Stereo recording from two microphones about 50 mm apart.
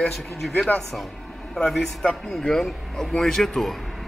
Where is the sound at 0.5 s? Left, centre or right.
Left.